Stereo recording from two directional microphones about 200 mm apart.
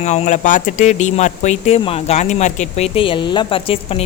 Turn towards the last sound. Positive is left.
turn(degrees=25)  # may be behind; listen again after turning